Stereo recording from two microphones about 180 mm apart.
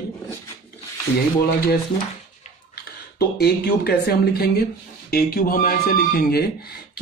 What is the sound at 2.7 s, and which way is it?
Speech, 60° left (ahead or behind).